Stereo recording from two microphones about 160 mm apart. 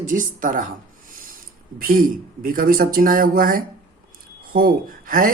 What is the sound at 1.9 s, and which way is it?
Speech, 60° right (ahead or behind).